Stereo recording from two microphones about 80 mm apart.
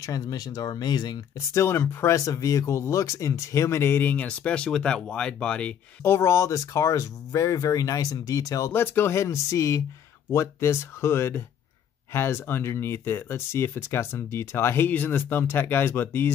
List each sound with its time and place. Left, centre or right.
0.0 s speech: left
1.5 s speech: left; by 5.8 s centre
6.0 s speech: left
8.7 s speech: left